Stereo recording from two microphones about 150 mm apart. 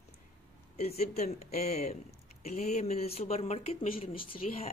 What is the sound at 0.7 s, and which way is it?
A woman's voice, 45° left (ahead or behind).